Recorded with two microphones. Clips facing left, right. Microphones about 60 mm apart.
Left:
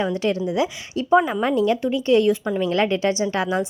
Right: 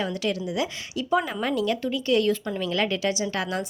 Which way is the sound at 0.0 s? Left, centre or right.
Left.